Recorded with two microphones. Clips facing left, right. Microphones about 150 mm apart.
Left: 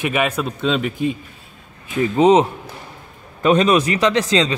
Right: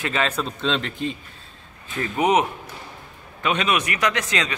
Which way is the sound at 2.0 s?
25° left (ahead or behind).